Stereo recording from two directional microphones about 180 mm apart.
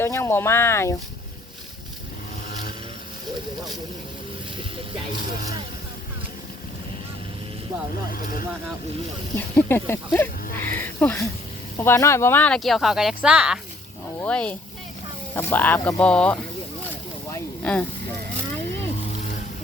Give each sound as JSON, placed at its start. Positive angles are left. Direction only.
{"t": 0.0, "sound": "speech", "side_deg": 15}
{"t": 5.3, "sound": "speech", "side_deg": 50}
{"t": 8.1, "sound": "speech", "side_deg": 55}
{"t": 9.3, "sound": "speech", "side_deg": 10}
{"t": 14.2, "sound": "speech", "side_deg": 5}
{"t": 17.3, "sound": "a sound", "side_deg": 5}